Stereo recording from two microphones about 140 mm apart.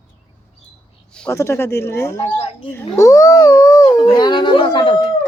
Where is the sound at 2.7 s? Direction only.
25° left (ahead or behind).